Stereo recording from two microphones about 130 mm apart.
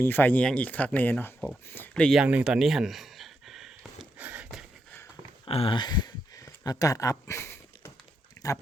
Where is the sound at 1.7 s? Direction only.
10° left (ahead or behind).